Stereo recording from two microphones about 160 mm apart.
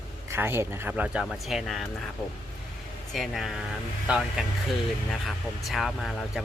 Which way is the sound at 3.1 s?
Centre (ahead or behind).